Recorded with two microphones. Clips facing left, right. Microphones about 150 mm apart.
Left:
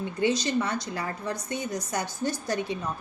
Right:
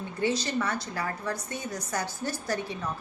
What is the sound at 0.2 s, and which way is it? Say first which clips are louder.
A woman's voice: left 2 dB; 15° left (ahead or behind).